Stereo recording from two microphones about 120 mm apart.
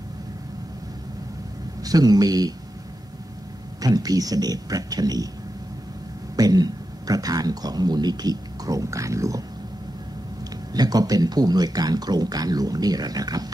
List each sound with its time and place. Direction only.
1.8 s speech: 30° right (ahead or behind)
3.8 s speech: 30° right (ahead or behind)
6.3 s speech: 30° right (ahead or behind)
10.7 s speech: 30° right (ahead or behind)